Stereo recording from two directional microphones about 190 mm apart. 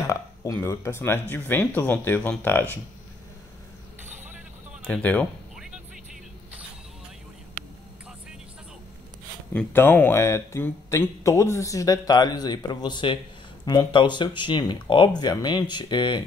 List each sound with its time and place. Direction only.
0.0 s speech: 15° left (ahead or behind)
4.1 s vehicle: 10° right (ahead or behind)
4.8 s speech: 10° left (ahead or behind)
9.5 s speech: 10° left (ahead or behind)